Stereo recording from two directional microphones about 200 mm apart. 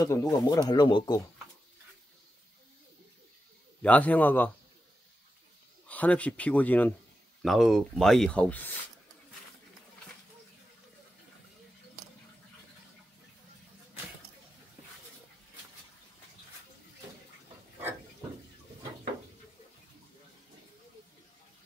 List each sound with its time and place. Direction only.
0.0 s speech: 15° left (ahead or behind)
3.8 s speech: 5° left (ahead or behind)
5.9 s speech: 5° left (ahead or behind)